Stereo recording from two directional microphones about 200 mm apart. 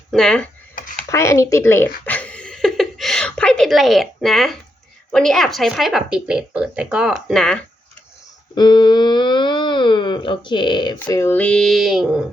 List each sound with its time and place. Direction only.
0.1 s speech: 5° left (ahead or behind)
1.1 s a sound: 15° left (ahead or behind)
5.1 s speech: centre (ahead or behind)
8.5 s speech: 20° left (ahead or behind)
11.0 s speech: 10° left (ahead or behind)